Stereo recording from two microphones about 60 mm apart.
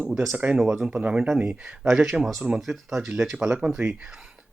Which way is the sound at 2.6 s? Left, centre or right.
Centre.